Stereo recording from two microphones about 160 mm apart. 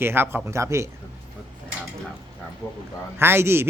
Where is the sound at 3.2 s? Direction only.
15° right (ahead or behind).